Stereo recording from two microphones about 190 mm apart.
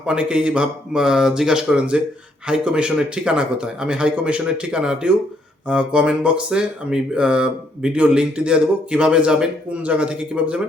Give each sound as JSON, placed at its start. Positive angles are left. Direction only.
{"t": 0.0, "sound": "speech", "side_deg": -5}